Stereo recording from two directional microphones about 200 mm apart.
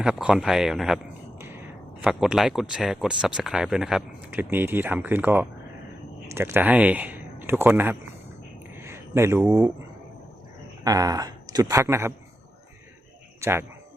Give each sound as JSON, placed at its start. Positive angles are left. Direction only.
{"t": 0.0, "sound": "speech", "side_deg": -5}
{"t": 2.0, "sound": "speech", "side_deg": -5}
{"t": 8.7, "sound": "a sound", "side_deg": -15}
{"t": 10.8, "sound": "speech", "side_deg": -20}
{"t": 13.4, "sound": "speech", "side_deg": -15}